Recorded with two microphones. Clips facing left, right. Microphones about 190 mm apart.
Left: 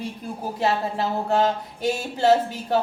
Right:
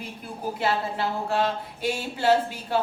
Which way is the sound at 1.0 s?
40° left (ahead or behind).